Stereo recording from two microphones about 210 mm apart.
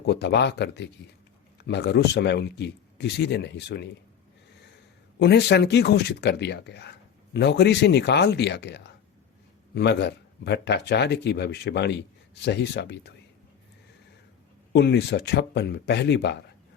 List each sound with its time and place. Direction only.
0.0 s speech: 55° left (ahead or behind)
5.2 s speech: 55° left (ahead or behind)
14.7 s speech: 55° left (ahead or behind)